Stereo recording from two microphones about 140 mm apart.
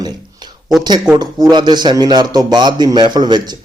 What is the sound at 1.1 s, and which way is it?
Speech, 30° right (ahead or behind).